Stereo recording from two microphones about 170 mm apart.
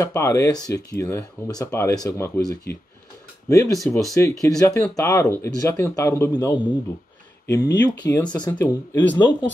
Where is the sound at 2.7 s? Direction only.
65° left (ahead or behind).